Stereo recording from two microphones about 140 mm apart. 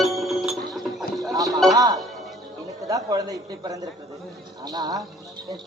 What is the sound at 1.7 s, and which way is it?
Speech, 25° right (ahead or behind).